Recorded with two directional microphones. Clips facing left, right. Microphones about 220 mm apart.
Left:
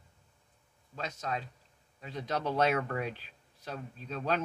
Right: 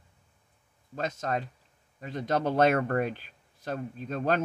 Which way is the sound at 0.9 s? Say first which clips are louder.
Right 6 dB; 50° right (ahead or behind).